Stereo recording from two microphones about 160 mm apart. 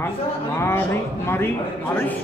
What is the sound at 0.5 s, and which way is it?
Speech, 15° left (ahead or behind).